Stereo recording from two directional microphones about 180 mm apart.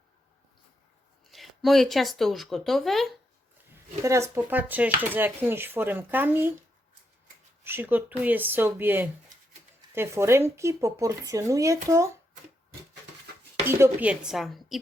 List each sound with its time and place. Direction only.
1.3 s speech: centre (ahead or behind)
4.0 s speech: 15° right (ahead or behind)
7.6 s speech: 10° right (ahead or behind)
13.7 s speech: 15° right (ahead or behind)